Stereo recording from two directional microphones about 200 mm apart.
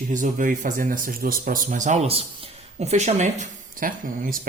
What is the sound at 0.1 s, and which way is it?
Speech, 40° right (ahead or behind).